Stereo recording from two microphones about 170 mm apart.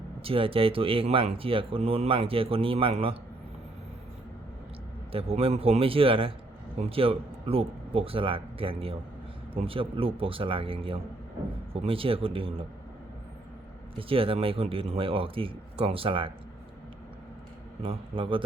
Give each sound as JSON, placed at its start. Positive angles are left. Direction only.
{"t": 0.2, "sound": "speech", "side_deg": -30}
{"t": 5.1, "sound": "speech", "side_deg": -35}
{"t": 14.1, "sound": "speech", "side_deg": -30}
{"t": 17.8, "sound": "speech", "side_deg": -30}